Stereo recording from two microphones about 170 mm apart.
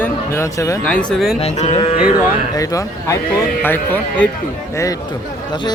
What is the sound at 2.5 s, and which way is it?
Speech, 20° left (ahead or behind).